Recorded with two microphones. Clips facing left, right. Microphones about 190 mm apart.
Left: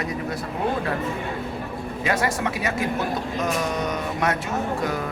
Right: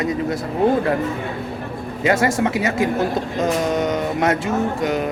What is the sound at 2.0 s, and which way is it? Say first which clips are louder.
Speech: right 7 dB; 25° right (ahead or behind).